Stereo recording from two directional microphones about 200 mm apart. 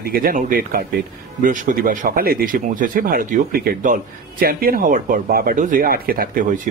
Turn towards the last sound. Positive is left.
turn(degrees=-40)  # may be behind; listen again after turning